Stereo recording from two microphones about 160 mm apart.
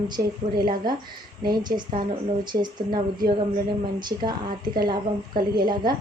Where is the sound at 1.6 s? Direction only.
25° right (ahead or behind).